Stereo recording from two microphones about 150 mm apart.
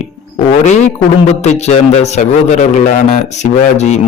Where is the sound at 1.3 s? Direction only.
45° left (ahead or behind).